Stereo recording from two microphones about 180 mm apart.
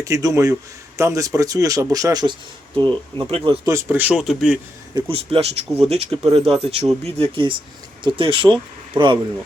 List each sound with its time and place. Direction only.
0.0 s a man's voice: 20° right (ahead or behind); by 4.6 s centre (ahead or behind)
4.9 s a man's voice: 30° right (ahead or behind)